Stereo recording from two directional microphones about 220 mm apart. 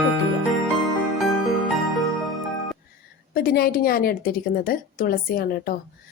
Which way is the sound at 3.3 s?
45° left (ahead or behind).